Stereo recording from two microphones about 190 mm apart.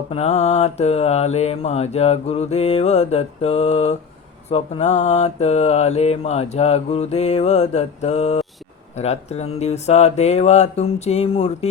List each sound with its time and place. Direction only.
0.1 s mantra: 35° left (ahead or behind)